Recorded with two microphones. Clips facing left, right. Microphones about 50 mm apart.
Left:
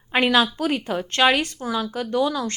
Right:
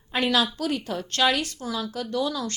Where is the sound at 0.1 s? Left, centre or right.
Left.